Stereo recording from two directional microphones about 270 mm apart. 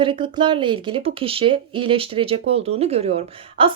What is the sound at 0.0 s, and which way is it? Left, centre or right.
A woman's voice, centre.